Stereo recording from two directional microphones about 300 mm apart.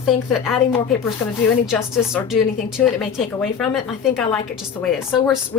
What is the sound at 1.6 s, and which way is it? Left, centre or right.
A woman's voice, centre.